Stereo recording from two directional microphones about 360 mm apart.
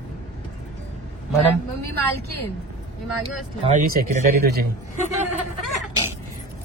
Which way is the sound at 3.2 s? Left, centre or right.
Centre.